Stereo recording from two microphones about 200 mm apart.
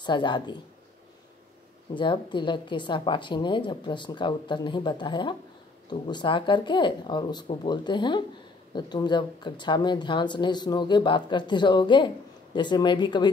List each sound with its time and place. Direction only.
0.0 s speech: 20° left (ahead or behind)
2.0 s speech: 25° left (ahead or behind)